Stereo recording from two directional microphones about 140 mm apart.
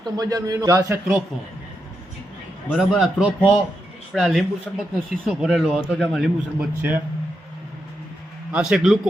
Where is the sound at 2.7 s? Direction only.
Centre (ahead or behind).